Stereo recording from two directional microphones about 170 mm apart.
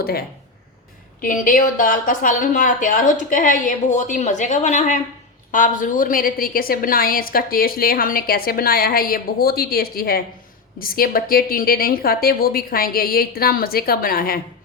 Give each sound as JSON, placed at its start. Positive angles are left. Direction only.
{"t": 0.0, "sound": "a woman's voice", "side_deg": 65}